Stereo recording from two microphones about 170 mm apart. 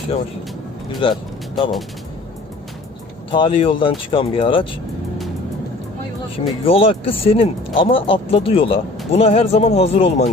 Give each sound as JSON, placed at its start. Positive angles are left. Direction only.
{"t": 1.0, "sound": "speech", "side_deg": 30}
{"t": 3.3, "sound": "speech", "side_deg": 30}
{"t": 6.3, "sound": "speech", "side_deg": 35}